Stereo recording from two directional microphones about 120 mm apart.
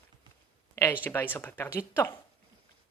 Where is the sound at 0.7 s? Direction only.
20° left (ahead or behind).